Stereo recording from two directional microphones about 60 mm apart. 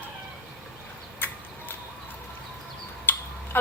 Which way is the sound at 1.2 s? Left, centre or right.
Left.